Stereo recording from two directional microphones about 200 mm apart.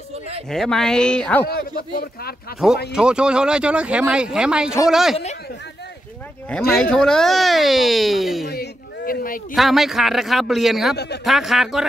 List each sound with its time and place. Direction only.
0.5 s speech: centre (ahead or behind)
1.5 s speech: 50° left (ahead or behind)
2.9 s speech: 5° right (ahead or behind)
6.7 s speech: 5° left (ahead or behind)
8.5 s a man's voice: 50° left (ahead or behind)
9.6 s speech: centre (ahead or behind)